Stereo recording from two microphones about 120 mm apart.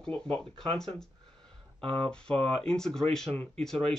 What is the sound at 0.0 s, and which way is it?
Speech, 10° left (ahead or behind).